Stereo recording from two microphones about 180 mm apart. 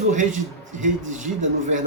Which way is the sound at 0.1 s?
45° right (ahead or behind).